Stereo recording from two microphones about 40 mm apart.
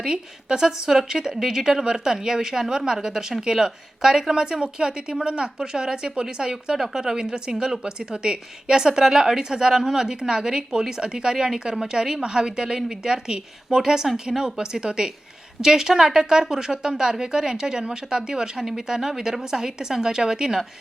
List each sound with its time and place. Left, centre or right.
0.0 s a woman's voice: centre
6.7 s a woman's voice: centre
18.6 s a woman's voice: centre